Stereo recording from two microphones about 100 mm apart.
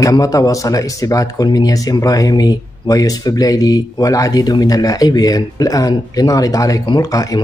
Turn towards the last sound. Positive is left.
turn(degrees=35)  # may be behind; listen again after turning